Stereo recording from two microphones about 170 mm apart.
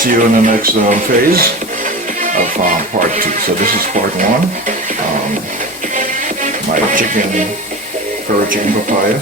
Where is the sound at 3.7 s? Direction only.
50° right (ahead or behind).